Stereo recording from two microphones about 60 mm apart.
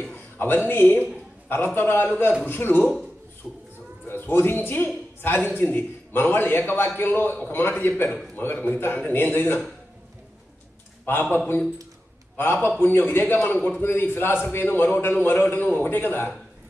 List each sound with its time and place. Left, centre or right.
0.1 s a sound: left
0.7 s speech: left
3.4 s speech: centre
4.1 s speech: left
11.1 s speech: left